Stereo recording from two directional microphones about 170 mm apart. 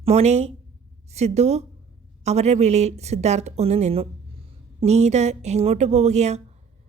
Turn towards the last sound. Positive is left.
turn(degrees=-40)  # may be behind; listen again after turning